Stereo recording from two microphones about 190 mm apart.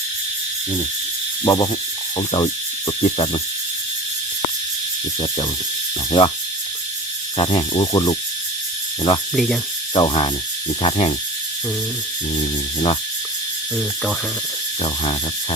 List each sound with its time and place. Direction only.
1.5 s owl: 20° left (ahead or behind)
6.1 s owl: 25° left (ahead or behind)
7.3 s owl: 25° left (ahead or behind)
9.3 s insect: centre (ahead or behind)
9.9 s owl: 25° left (ahead or behind)
10.8 s music: 35° left (ahead or behind)
12.4 s music: 30° left (ahead or behind)
13.7 s insect: centre (ahead or behind)